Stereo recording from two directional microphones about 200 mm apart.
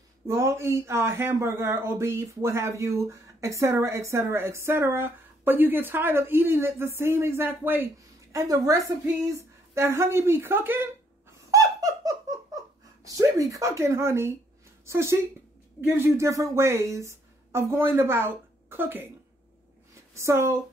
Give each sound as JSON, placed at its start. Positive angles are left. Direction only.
{"t": 0.3, "sound": "a man's voice", "side_deg": -15}
{"t": 11.5, "sound": "squeak", "side_deg": -15}
{"t": 13.0, "sound": "a man's voice", "side_deg": -15}
{"t": 20.2, "sound": "a man's voice", "side_deg": -15}